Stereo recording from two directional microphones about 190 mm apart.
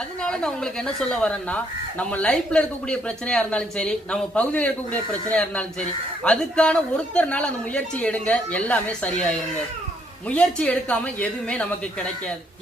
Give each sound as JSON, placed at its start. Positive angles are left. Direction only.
{"t": 0.2, "sound": "a woman's voice", "side_deg": 5}
{"t": 10.2, "sound": "a woman's voice", "side_deg": 5}